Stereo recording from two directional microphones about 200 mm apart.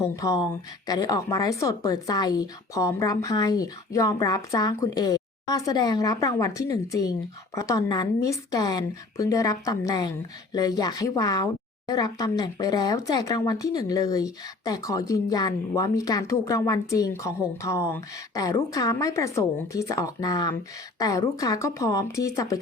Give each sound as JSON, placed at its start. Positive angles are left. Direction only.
{"t": 0.0, "sound": "a woman's voice", "side_deg": 15}